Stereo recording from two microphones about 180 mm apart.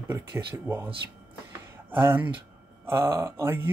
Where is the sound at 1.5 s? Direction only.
10° right (ahead or behind).